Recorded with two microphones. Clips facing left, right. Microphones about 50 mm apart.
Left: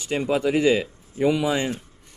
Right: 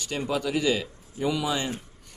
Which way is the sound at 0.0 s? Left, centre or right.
Left.